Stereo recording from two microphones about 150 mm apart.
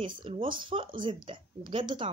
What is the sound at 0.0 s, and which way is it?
Speech, 35° right (ahead or behind).